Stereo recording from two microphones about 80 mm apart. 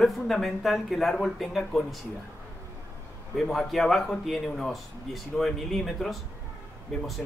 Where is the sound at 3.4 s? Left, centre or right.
Centre.